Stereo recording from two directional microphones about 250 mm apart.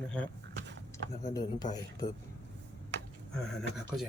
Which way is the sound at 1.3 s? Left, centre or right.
Centre.